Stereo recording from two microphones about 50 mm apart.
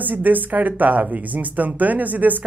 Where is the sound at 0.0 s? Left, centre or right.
Right.